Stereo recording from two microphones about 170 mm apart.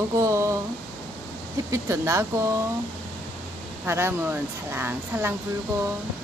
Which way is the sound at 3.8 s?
15° right (ahead or behind).